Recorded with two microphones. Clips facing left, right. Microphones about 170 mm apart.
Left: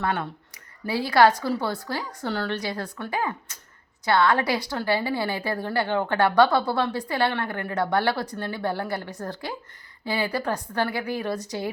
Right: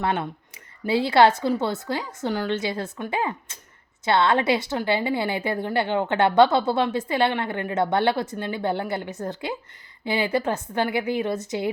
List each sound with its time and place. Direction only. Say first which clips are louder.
0.0 s a woman's voice: right 2 dB; 20° right (ahead or behind)